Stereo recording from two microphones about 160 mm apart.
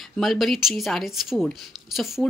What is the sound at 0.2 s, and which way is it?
A woman's voice, centre (ahead or behind).